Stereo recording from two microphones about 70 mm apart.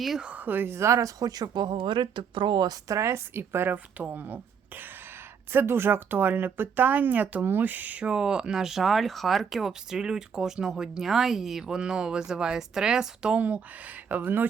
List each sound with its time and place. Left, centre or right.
0.2 s a woman's voice: centre; by 1.7 s right
2.5 s speech: right
2.8 s a woman's voice: right